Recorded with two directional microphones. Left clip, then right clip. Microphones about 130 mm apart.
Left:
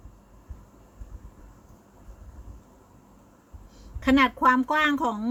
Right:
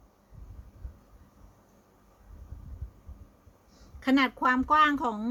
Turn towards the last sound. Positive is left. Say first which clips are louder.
# even
turn(degrees=-15)  # may be behind; listen again after turning